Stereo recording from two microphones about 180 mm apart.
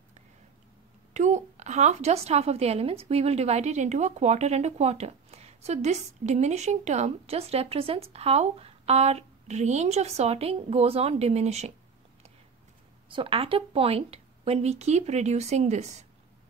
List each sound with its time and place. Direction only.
1.1 s a woman's voice: 40° right (ahead or behind)
13.1 s a woman's voice: 30° right (ahead or behind)